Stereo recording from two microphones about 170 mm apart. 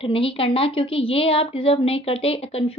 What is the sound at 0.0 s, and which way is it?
A woman's voice, 30° left (ahead or behind).